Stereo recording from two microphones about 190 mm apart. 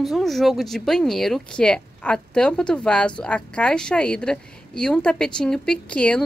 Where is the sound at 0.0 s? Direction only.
Centre (ahead or behind).